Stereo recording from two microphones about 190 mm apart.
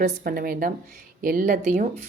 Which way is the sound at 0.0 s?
50° right (ahead or behind).